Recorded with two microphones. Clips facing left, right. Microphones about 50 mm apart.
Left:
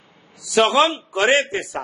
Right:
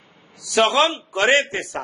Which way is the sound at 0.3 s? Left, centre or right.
Centre.